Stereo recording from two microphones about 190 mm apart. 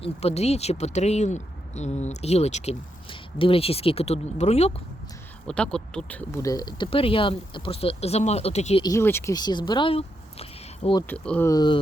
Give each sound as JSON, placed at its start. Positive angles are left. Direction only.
{"t": 0.0, "sound": "speech", "side_deg": 35}
{"t": 5.5, "sound": "speech", "side_deg": 5}
{"t": 8.8, "sound": "speech", "side_deg": 15}
{"t": 11.1, "sound": "speech", "side_deg": 10}